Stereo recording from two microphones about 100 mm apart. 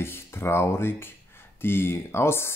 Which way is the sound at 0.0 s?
25° left (ahead or behind).